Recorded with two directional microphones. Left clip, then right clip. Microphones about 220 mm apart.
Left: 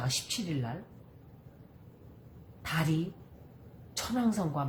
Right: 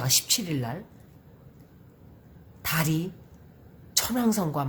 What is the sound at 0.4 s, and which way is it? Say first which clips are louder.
Speech: right 5 dB; 50° right (ahead or behind).